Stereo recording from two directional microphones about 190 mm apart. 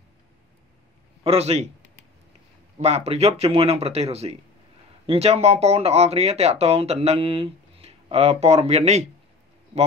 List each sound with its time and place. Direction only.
1.2 s speech: 30° right (ahead or behind)
2.8 s speech: 35° right (ahead or behind)